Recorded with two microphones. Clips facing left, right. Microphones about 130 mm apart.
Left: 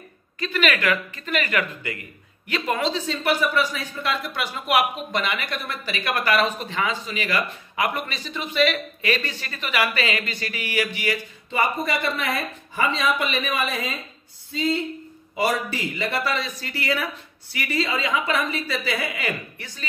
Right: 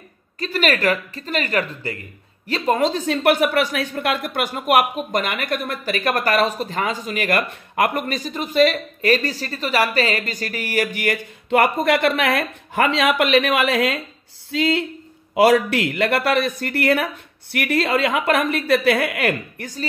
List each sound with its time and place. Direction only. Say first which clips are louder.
0.4 s speech: right 3 dB; 40° right (ahead or behind); by 19.7 s 60° right (ahead or behind)